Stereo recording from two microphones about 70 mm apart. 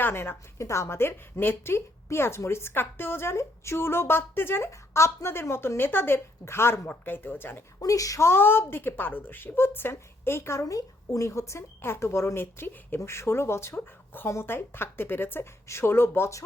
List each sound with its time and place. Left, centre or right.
0.0 s a woman's voice: left
0.6 s a woman's voice: left
7.8 s speech: left
8.2 s a woman's voice: left
10.6 s a woman's voice: left